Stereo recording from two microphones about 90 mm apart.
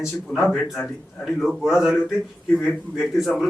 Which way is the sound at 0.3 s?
20° left (ahead or behind).